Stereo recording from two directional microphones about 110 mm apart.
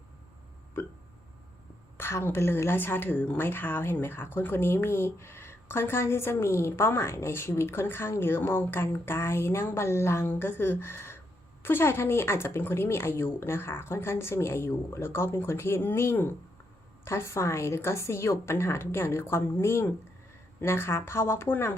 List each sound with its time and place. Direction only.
2.0 s a woman's voice: 20° left (ahead or behind)